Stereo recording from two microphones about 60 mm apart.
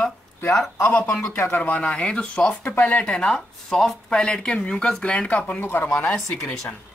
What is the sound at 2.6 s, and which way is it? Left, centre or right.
Speech, left.